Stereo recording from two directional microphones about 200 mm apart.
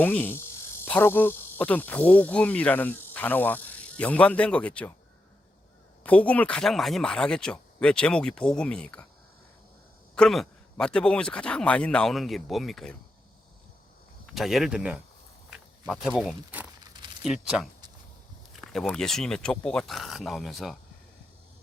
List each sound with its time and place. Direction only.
0.0 s speech: 10° left (ahead or behind)
6.0 s speech: 5° left (ahead or behind)
10.2 s speech: centre (ahead or behind)
14.3 s speech: centre (ahead or behind)